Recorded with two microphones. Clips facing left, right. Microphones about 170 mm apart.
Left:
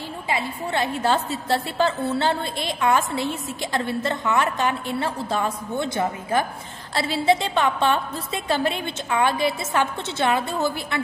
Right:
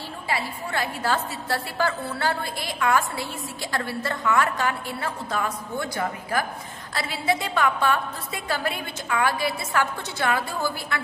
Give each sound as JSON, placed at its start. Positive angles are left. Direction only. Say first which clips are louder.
{"t": 0.3, "sound": "a woman's voice", "louder": "left 3 dB", "side_deg": 20}